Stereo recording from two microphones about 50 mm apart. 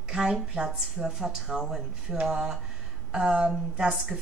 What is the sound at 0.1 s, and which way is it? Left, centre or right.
Speech, centre.